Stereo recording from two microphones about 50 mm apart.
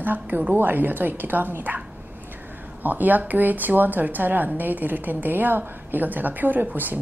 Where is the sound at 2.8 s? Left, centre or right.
Right.